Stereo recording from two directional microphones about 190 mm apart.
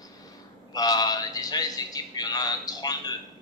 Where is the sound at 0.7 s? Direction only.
20° left (ahead or behind).